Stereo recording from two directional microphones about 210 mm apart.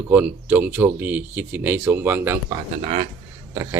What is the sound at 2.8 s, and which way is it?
Speech, 25° right (ahead or behind).